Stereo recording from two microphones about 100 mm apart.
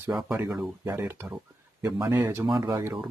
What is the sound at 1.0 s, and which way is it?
Speech, 20° right (ahead or behind).